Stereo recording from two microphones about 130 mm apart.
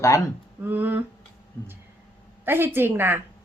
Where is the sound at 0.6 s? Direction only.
15° right (ahead or behind).